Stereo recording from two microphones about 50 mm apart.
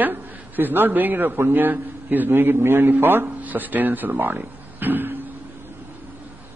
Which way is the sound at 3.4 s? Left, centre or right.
Right.